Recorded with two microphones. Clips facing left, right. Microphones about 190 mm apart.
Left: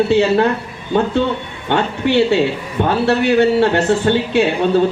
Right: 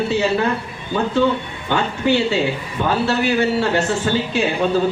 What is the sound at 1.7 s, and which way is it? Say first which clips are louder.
A man's voice: left 2 dB; 65° left (ahead or behind).